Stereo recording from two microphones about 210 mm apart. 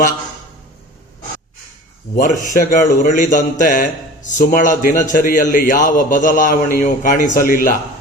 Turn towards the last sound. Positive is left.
turn(degrees=40)  # may be behind; listen again after turning